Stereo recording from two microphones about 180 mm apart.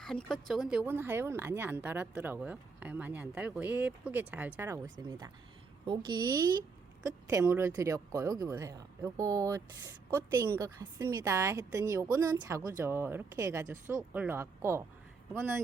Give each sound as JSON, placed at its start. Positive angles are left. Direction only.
{"t": 0.0, "sound": "a woman's voice", "side_deg": 5}